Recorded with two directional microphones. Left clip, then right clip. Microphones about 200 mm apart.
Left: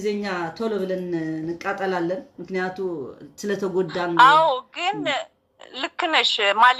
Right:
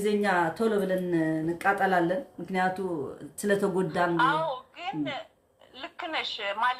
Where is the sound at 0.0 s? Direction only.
10° right (ahead or behind).